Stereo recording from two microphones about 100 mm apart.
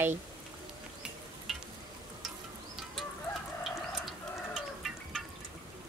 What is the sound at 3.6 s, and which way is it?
Fowl, centre (ahead or behind).